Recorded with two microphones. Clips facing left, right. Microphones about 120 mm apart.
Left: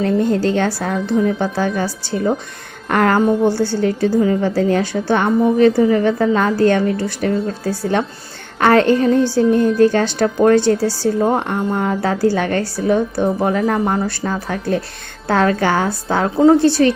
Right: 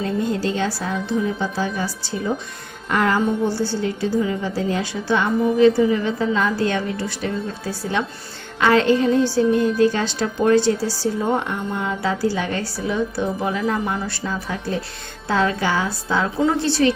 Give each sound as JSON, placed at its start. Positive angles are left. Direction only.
{"t": 0.0, "sound": "a woman's voice", "side_deg": 60}
{"t": 16.4, "sound": "a woman's voice", "side_deg": 40}